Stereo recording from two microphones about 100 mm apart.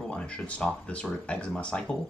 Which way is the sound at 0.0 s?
10° left (ahead or behind).